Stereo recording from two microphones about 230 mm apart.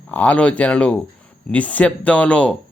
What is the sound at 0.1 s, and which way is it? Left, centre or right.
Speech, centre.